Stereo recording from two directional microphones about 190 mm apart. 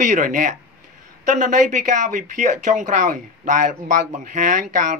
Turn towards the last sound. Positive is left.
turn(degrees=-40)  # may be behind; listen again after turning